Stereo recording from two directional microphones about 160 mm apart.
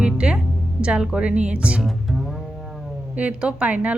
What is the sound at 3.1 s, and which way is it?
Speech, 10° right (ahead or behind).